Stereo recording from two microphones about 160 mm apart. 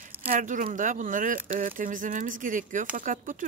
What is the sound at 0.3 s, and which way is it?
Speech, 55° right (ahead or behind).